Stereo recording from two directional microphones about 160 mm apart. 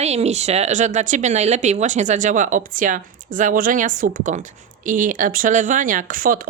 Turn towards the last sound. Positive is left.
turn(degrees=-60)  # may be behind; listen again after turning